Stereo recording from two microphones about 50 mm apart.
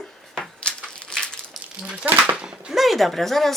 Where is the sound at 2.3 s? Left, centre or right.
Centre.